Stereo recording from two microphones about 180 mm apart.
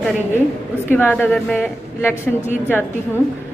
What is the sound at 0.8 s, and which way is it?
A woman's voice, 10° left (ahead or behind).